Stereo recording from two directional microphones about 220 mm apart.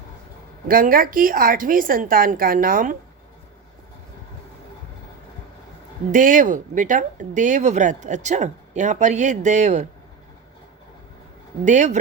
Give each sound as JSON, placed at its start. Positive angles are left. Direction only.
{"t": 0.7, "sound": "speech", "side_deg": -40}
{"t": 6.1, "sound": "speech", "side_deg": -35}
{"t": 11.6, "sound": "speech", "side_deg": -35}